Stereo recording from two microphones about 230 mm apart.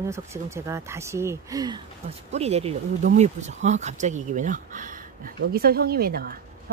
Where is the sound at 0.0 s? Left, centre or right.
Centre.